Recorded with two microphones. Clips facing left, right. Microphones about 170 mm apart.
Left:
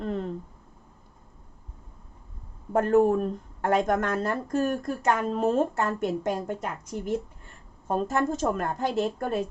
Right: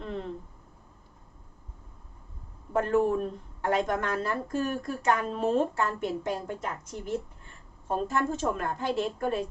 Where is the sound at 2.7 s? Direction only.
45° left (ahead or behind).